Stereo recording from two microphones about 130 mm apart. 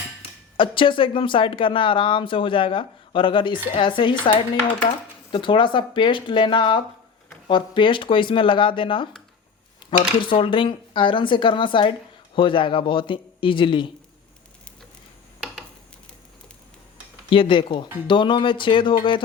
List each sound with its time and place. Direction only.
0.5 s speech: 40° left (ahead or behind)
10.2 s speech: 40° left (ahead or behind)
17.2 s speech: 40° left (ahead or behind)